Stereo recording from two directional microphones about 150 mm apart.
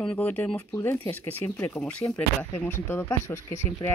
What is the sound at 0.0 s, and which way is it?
Speech, 10° left (ahead or behind).